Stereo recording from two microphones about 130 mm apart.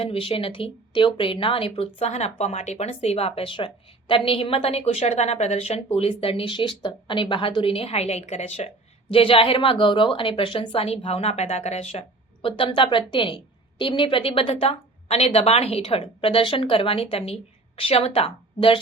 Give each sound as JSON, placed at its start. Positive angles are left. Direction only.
{"t": 0.0, "sound": "a woman's voice", "side_deg": 45}